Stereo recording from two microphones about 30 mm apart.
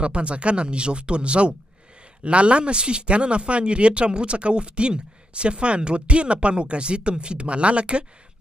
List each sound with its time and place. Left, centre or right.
0.0 s speech: right